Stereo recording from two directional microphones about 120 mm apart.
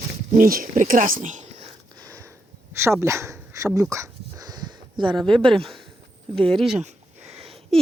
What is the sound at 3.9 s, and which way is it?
Dog, 25° right (ahead or behind).